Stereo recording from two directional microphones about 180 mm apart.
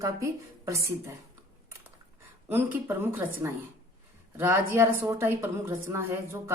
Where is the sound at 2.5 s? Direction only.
10° right (ahead or behind).